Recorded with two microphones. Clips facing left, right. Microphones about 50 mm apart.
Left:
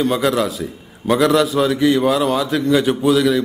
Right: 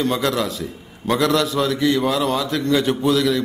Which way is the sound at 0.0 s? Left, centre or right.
Centre.